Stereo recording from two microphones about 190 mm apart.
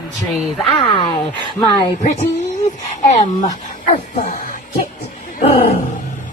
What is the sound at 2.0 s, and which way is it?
Speech, 40° left (ahead or behind).